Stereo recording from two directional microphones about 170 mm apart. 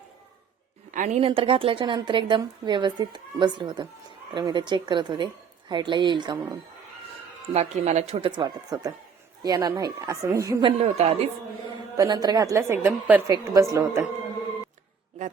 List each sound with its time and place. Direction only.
0.9 s a woman's voice: 50° right (ahead or behind); by 6.3 s 25° right (ahead or behind)
6.3 s speech: 15° right (ahead or behind)
7.5 s a woman's voice: 40° right (ahead or behind); by 10.6 s 20° right (ahead or behind)
10.6 s speech: 35° right (ahead or behind)
11.9 s a woman's voice: 25° right (ahead or behind)